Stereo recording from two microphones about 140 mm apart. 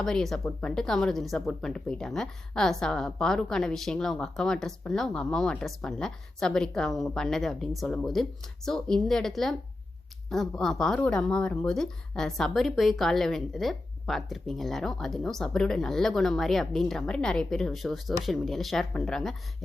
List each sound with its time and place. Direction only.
0.0 s speech: 5° left (ahead or behind)